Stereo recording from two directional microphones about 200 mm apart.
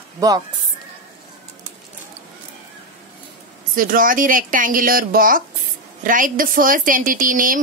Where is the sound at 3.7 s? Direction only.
45° right (ahead or behind).